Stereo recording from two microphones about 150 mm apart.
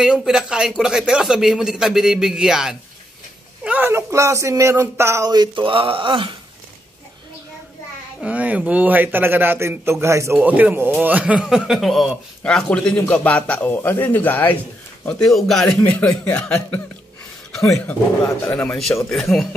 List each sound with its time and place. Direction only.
0.0 s speech: 5° right (ahead or behind); by 6.3 s 35° right (ahead or behind)
8.2 s a man's voice: 10° right (ahead or behind)